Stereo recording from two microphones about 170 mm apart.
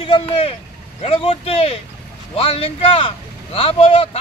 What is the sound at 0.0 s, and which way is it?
Speech, 30° left (ahead or behind).